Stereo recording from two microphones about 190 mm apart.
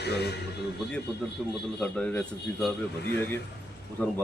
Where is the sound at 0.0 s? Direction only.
60° left (ahead or behind).